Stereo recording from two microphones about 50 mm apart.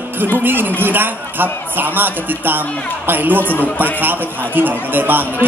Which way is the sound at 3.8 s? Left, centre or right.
Right.